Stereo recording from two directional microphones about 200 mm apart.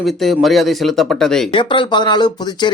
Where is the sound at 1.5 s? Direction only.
25° left (ahead or behind).